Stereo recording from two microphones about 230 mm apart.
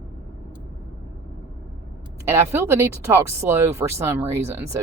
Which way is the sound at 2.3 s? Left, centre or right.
Centre.